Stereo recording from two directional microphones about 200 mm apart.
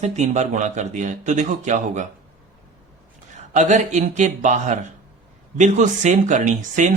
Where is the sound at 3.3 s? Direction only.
35° right (ahead or behind).